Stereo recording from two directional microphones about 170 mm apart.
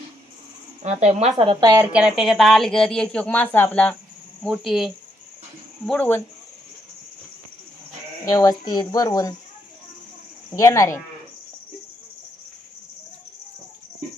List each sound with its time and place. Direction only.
0.8 s a woman's voice: 40° right (ahead or behind)
1.8 s speech: 5° right (ahead or behind); by 3.9 s 10° left (ahead or behind)
4.4 s speech: centre (ahead or behind)
8.2 s speech: 20° left (ahead or behind)
10.5 s speech: 15° left (ahead or behind)